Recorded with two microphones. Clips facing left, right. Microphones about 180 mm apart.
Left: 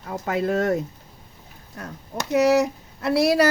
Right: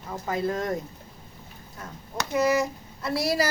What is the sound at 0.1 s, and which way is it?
Speech, 75° left (ahead or behind).